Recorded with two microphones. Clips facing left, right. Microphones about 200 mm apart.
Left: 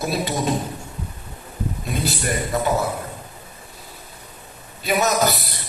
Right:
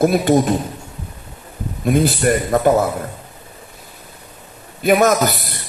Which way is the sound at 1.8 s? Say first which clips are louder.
Right 12 dB; 55° right (ahead or behind).